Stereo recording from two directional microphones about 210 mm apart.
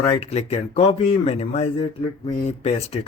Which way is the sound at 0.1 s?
30° left (ahead or behind).